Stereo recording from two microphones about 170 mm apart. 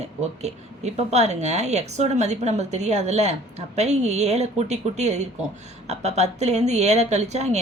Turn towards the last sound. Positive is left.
turn(degrees=-40)  # may be behind; listen again after turning